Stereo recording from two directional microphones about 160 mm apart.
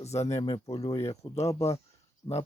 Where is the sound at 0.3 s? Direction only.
25° left (ahead or behind).